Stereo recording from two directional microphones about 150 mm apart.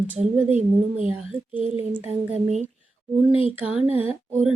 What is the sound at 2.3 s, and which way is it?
Speech, 50° right (ahead or behind).